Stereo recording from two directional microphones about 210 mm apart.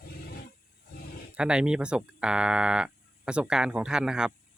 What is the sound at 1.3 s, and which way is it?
Speech, 5° right (ahead or behind).